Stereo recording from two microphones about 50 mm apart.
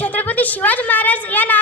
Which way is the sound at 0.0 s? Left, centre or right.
Left.